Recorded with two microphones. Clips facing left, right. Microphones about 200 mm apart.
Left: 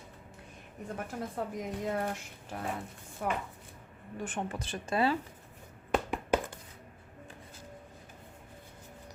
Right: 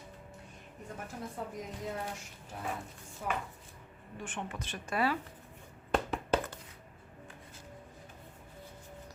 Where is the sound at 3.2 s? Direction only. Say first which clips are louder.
Left 3 dB; 60° left (ahead or behind).